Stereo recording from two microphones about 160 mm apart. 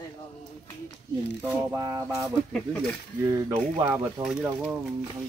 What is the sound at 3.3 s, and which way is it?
Speech, 20° right (ahead or behind).